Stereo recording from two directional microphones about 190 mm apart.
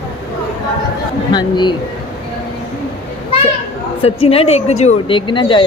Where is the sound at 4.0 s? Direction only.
30° left (ahead or behind).